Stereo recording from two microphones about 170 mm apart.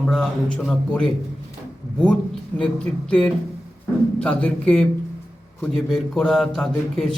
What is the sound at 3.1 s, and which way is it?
A man's voice, 5° left (ahead or behind).